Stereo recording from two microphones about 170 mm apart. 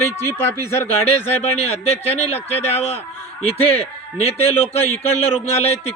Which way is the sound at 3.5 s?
35° left (ahead or behind).